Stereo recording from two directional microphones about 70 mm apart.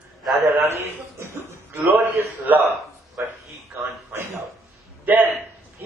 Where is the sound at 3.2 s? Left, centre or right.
Right.